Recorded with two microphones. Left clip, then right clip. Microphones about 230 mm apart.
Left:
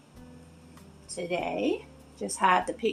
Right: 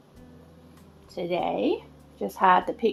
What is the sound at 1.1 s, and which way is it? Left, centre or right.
A woman's voice, right.